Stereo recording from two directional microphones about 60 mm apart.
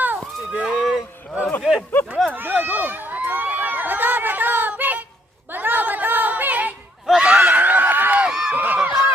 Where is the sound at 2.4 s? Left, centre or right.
Right.